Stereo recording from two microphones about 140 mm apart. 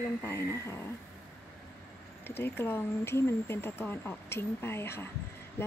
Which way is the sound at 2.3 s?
15° left (ahead or behind).